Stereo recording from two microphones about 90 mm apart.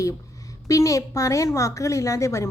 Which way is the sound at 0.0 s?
40° left (ahead or behind).